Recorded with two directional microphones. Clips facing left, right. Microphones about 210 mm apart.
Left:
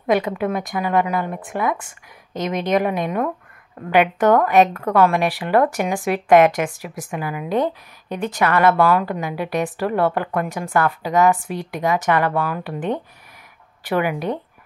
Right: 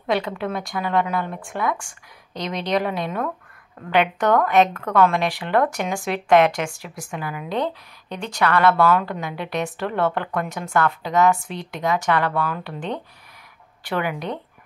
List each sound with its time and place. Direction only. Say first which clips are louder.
0.0 s speech: left 4 dB; 15° left (ahead or behind)
2.3 s speech: left 5 dB; 45° left (ahead or behind)
2.7 s speech: left 3 dB; 15° left (ahead or behind)